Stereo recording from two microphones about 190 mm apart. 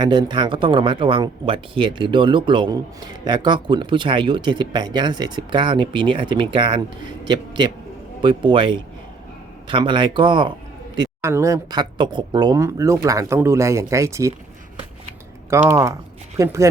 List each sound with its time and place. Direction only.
0.0 s speech: 25° right (ahead or behind)
15.4 s speech: 15° right (ahead or behind)